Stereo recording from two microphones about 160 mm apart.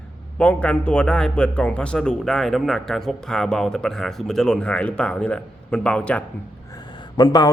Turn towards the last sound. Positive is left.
turn(degrees=25)  # may be behind; listen again after turning